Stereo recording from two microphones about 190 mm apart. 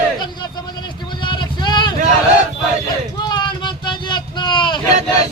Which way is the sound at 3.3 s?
25° left (ahead or behind).